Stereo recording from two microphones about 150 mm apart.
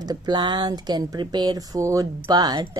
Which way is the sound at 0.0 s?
25° right (ahead or behind).